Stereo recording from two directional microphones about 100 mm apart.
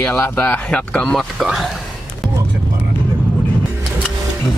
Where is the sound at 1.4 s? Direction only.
5° right (ahead or behind).